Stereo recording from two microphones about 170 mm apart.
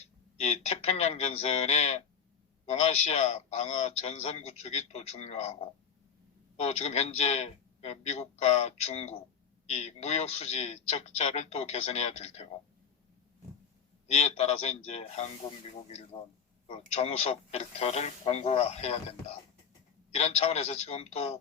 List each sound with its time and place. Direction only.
0.3 s a man's voice: 40° left (ahead or behind)
14.1 s a man's voice: 40° left (ahead or behind)
16.9 s a man's voice: 35° left (ahead or behind)
20.1 s a man's voice: 40° left (ahead or behind)